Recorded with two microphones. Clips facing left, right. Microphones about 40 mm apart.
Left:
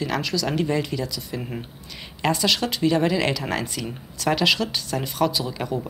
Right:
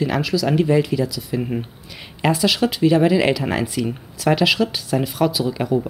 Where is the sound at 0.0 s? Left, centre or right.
Centre.